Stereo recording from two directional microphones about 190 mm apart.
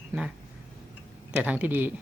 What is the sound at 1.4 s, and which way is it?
Speech, 5° right (ahead or behind).